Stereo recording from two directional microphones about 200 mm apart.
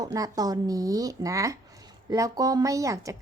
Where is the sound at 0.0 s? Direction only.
20° right (ahead or behind).